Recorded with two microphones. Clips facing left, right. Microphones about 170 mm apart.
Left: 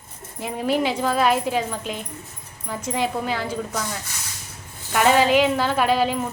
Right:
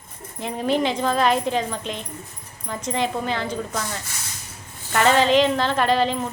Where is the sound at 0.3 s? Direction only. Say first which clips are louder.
Even; 5° left (ahead or behind).